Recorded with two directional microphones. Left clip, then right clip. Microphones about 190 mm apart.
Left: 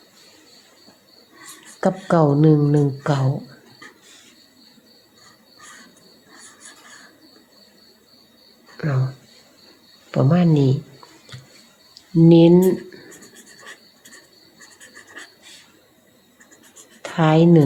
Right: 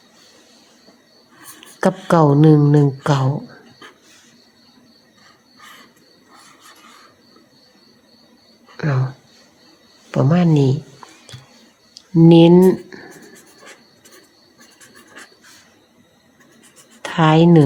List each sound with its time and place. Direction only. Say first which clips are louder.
2.0 s speech: right 3 dB; 30° right (ahead or behind)
8.8 s a sound: right 3 dB; 30° right (ahead or behind)
10.1 s speech: right 2 dB; 25° right (ahead or behind)
11.9 s speech: right 3 dB; 30° right (ahead or behind)
17.0 s speech: right 3 dB; 30° right (ahead or behind)